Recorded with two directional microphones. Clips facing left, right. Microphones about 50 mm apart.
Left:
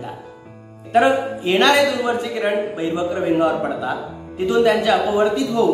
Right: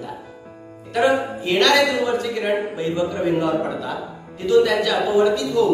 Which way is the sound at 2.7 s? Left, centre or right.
Left.